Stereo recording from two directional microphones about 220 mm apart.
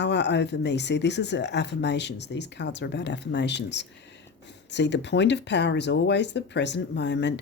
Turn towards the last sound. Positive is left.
turn(degrees=50)  # may be behind; listen again after turning